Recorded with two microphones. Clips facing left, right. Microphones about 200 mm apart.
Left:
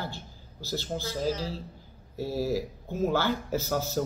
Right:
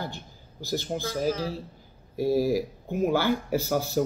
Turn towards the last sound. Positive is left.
turn(degrees=-15)  # may be behind; listen again after turning